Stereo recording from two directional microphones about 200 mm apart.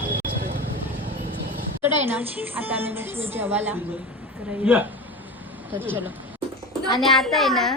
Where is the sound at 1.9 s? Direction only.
10° right (ahead or behind).